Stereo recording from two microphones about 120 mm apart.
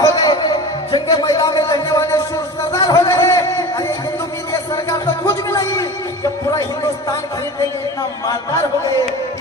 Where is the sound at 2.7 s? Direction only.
25° left (ahead or behind).